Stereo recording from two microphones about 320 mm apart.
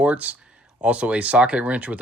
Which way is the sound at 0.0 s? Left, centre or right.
Centre.